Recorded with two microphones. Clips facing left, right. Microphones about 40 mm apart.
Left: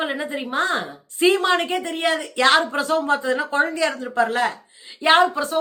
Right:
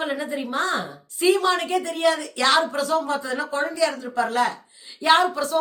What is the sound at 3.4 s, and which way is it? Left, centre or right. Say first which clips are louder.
A woman's voice: left 2 dB; left.